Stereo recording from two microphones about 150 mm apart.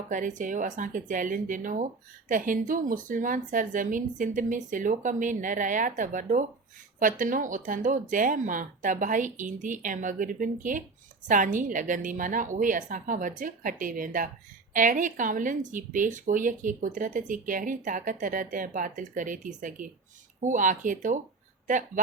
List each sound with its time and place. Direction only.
0.1 s speech: 60° right (ahead or behind)